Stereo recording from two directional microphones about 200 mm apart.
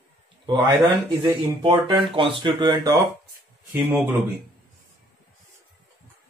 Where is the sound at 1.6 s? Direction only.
25° right (ahead or behind).